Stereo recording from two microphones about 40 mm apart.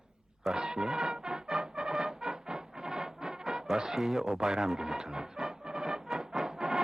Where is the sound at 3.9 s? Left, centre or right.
Centre.